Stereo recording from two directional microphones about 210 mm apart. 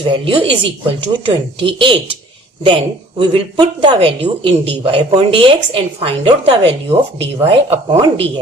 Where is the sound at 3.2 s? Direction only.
25° right (ahead or behind).